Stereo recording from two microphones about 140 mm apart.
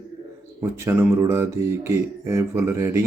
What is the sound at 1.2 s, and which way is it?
Speech, 20° right (ahead or behind).